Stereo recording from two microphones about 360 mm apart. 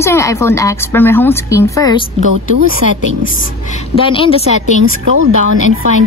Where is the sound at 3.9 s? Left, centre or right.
Centre.